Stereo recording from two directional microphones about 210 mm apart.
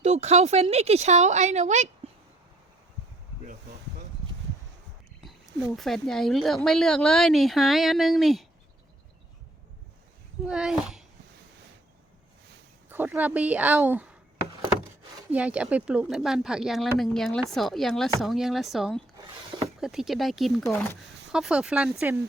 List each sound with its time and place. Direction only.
0.0 s a woman's voice: 30° right (ahead or behind)
5.2 s speech: centre (ahead or behind)
10.4 s speech: 5° right (ahead or behind)
12.9 s speech: 10° right (ahead or behind)
15.3 s speech: 5° right (ahead or behind)